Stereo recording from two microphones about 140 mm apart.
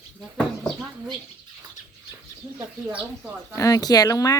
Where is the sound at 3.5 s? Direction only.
25° left (ahead or behind).